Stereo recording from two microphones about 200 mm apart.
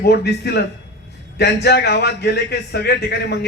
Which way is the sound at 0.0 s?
55° left (ahead or behind).